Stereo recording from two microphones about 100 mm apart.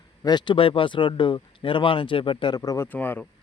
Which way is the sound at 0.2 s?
45° left (ahead or behind).